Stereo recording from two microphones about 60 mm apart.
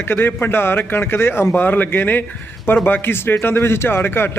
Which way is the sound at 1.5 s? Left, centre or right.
Left.